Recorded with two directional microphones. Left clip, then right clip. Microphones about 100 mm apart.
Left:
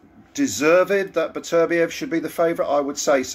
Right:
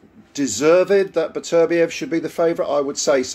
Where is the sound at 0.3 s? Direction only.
25° right (ahead or behind).